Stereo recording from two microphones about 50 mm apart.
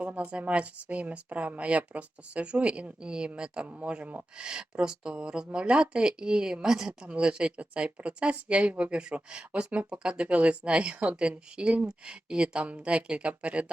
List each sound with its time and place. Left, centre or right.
0.3 s speech: right